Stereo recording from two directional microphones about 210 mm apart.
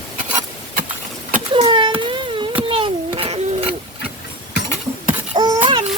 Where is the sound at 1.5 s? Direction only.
25° right (ahead or behind).